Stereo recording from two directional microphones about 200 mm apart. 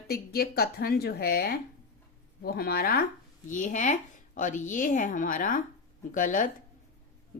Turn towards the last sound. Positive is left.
turn(degrees=40)  # may be behind; listen again after turning